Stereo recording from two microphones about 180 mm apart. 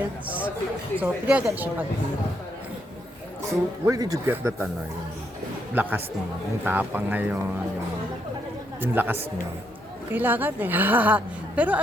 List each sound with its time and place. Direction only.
0.3 s a woman's voice: 10° right (ahead or behind)
3.8 s a woman's voice: 20° right (ahead or behind)
5.7 s a woman's voice: 10° right (ahead or behind)
8.8 s a woman's voice: 10° right (ahead or behind)